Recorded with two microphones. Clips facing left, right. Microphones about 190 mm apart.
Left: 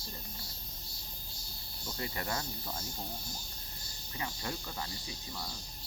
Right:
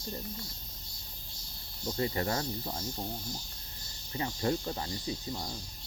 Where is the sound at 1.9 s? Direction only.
30° right (ahead or behind).